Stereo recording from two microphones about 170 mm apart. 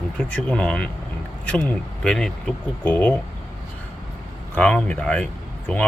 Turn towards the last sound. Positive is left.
turn(degrees=5)  # may be behind; listen again after turning